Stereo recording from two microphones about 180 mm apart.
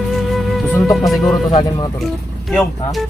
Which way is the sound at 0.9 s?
Centre (ahead or behind).